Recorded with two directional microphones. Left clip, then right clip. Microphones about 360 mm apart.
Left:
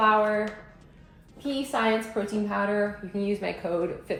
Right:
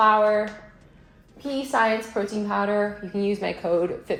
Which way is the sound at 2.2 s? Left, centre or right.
Right.